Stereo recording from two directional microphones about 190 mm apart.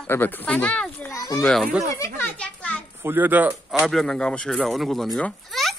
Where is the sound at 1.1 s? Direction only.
20° left (ahead or behind).